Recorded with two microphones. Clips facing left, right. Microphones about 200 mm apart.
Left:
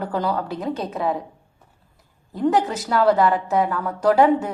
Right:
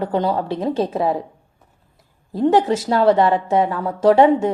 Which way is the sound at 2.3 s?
25° right (ahead or behind).